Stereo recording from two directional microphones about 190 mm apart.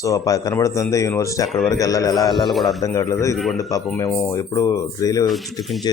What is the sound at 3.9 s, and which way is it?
Speech, 15° left (ahead or behind).